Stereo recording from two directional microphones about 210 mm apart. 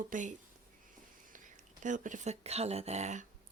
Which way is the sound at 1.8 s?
35° right (ahead or behind).